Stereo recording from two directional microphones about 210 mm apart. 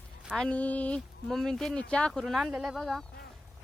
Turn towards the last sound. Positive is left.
turn(degrees=0)  # may be behind; listen again after turning